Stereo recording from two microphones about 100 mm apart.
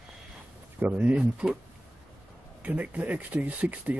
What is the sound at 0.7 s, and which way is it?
Speech, 15° right (ahead or behind).